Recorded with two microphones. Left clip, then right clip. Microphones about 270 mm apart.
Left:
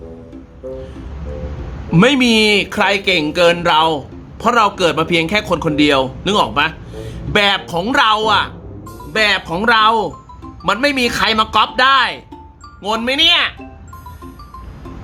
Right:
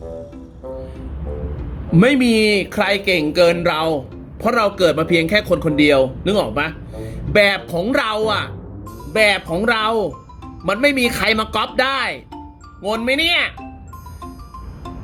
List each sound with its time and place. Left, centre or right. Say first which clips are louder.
1.9 s speech: left 3 dB; centre